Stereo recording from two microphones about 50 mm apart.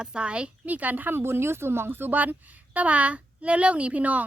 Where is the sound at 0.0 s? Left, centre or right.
Centre; by 1.2 s right.